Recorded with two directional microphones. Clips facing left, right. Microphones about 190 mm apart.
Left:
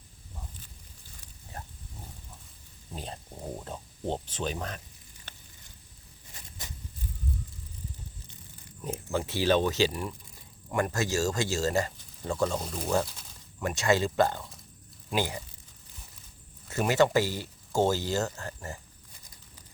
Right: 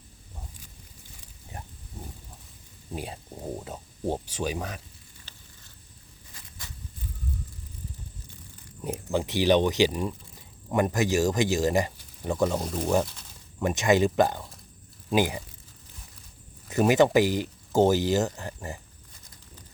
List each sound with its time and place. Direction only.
1.5 s wild animals: 15° right (ahead or behind)
2.9 s speech: 10° right (ahead or behind)
5.3 s a sound: 55° left (ahead or behind)
8.8 s speech: 15° right (ahead or behind)
16.6 s speech: 20° right (ahead or behind)